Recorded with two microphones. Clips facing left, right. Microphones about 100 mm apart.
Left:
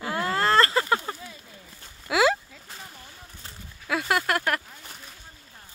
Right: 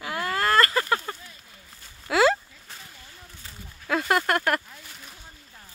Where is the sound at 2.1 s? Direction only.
15° left (ahead or behind).